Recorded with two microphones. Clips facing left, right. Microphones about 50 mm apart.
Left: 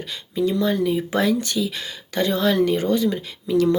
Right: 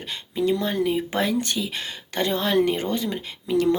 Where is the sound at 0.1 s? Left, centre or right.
Right.